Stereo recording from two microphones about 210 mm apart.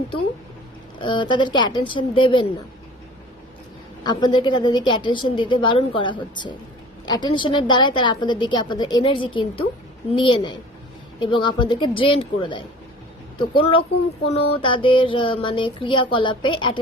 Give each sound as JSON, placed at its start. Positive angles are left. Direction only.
{"t": 0.9, "sound": "a woman's voice", "side_deg": 25}
{"t": 4.0, "sound": "a woman's voice", "side_deg": 20}